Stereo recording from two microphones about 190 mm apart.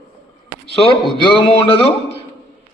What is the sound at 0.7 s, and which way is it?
A man's voice, 25° left (ahead or behind).